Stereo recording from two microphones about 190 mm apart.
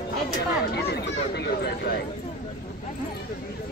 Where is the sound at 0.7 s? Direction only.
60° left (ahead or behind).